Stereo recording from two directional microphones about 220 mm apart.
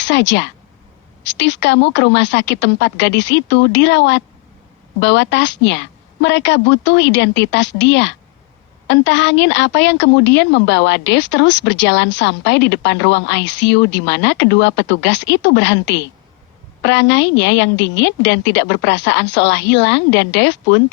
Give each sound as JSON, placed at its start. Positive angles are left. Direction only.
{"t": 0.0, "sound": "a woman's voice", "side_deg": 55}